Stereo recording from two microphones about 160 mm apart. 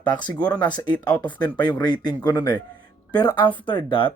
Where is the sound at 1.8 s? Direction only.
25° left (ahead or behind).